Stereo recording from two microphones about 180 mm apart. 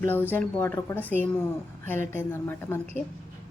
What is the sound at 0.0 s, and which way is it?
Speech, 10° left (ahead or behind).